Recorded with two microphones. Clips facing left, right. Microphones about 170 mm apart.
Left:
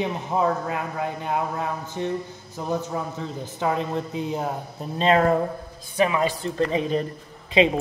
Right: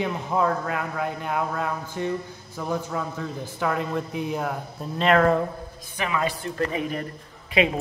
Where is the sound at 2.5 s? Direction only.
15° left (ahead or behind).